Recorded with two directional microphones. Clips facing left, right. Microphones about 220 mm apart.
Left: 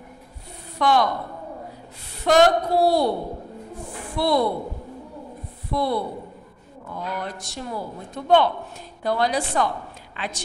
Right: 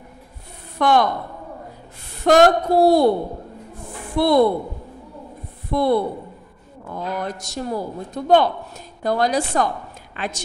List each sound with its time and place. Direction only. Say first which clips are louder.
0.7 s a woman's voice: right 3 dB; 50° right (ahead or behind)
2.2 s a woman's voice: right 3 dB; 45° right (ahead or behind)
4.2 s a woman's voice: right 6 dB; 50° right (ahead or behind)
5.7 s a man's voice: right 6 dB; 50° right (ahead or behind)